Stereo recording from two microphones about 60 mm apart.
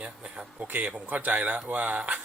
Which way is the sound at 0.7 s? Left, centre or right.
Right.